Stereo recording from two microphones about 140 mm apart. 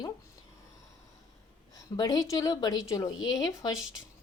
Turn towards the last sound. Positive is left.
turn(degrees=25)  # may be behind; listen again after turning